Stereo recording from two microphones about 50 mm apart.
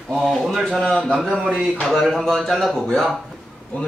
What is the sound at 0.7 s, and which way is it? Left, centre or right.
A man's voice, centre.